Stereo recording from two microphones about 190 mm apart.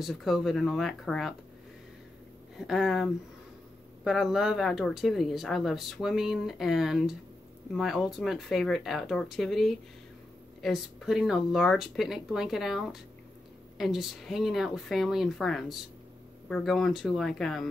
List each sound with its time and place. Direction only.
0.0 s speech: centre (ahead or behind)
2.5 s speech: centre (ahead or behind)